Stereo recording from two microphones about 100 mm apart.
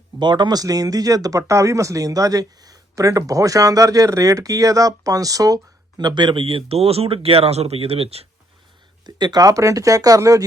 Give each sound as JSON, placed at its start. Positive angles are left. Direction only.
{"t": 0.2, "sound": "speech", "side_deg": -50}
{"t": 6.0, "sound": "speech", "side_deg": -45}
{"t": 9.0, "sound": "speech", "side_deg": -45}